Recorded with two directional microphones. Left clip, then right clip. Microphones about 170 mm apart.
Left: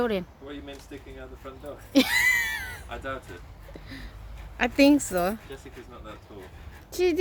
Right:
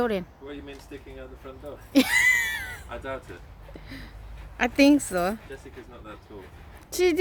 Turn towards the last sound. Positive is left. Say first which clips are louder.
# right 2 dB
turn(degrees=-15)  # may be behind; listen again after turning